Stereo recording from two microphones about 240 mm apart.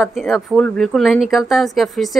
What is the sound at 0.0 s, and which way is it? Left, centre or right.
Speech, centre.